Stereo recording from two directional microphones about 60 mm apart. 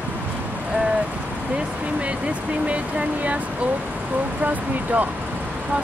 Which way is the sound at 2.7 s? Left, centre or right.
Centre.